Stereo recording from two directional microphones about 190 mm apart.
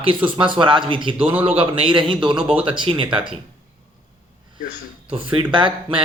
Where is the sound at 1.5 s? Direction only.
30° right (ahead or behind).